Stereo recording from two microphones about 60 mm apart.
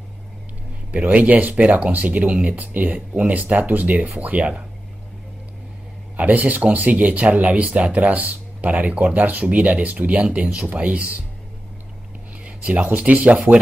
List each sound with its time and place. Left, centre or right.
0.9 s speech: right
6.1 s speech: right
12.4 s speech: right